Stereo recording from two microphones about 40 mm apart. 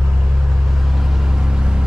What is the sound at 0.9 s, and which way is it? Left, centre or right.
Vehicle, centre.